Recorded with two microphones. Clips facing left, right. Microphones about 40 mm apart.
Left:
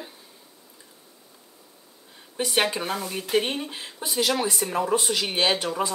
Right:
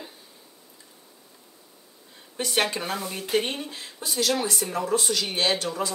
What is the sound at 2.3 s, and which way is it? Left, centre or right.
Speech, centre.